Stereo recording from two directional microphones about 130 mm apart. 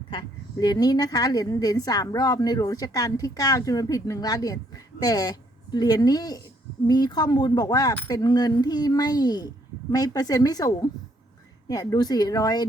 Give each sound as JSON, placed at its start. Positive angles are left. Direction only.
{"t": 0.1, "sound": "a woman's voice", "side_deg": 35}